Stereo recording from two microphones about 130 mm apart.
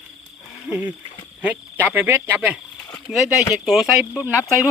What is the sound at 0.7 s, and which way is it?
Speech, 10° right (ahead or behind).